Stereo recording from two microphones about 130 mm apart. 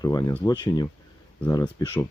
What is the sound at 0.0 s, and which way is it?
Speech, 25° left (ahead or behind).